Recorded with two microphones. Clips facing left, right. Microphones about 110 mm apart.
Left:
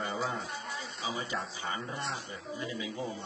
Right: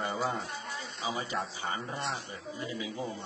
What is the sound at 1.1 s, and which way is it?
A man's voice, 40° right (ahead or behind).